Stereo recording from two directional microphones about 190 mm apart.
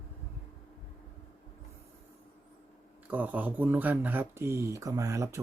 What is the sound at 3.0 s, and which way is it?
Speech, 10° right (ahead or behind).